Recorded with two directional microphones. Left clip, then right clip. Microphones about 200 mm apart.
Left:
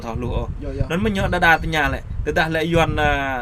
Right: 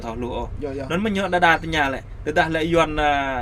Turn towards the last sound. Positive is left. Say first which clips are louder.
# even
turn(degrees=20)  # may be behind; listen again after turning